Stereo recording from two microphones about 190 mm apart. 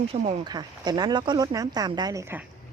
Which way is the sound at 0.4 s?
20° right (ahead or behind).